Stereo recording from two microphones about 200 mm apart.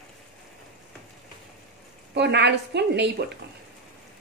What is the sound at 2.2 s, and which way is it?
Speech, 60° right (ahead or behind).